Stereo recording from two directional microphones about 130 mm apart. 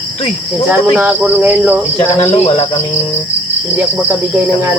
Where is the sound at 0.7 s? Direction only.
10° right (ahead or behind).